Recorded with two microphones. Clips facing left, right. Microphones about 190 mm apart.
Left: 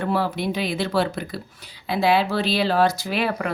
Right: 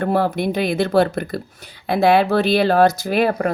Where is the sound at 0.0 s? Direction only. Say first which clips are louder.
Right 5 dB; 50° right (ahead or behind).